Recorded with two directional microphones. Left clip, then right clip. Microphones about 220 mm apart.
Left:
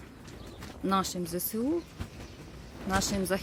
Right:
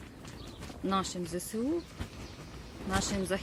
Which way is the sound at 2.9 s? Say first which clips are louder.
Left 3 dB; 15° left (ahead or behind).